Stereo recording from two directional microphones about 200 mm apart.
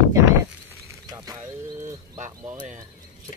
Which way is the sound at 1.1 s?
15° right (ahead or behind).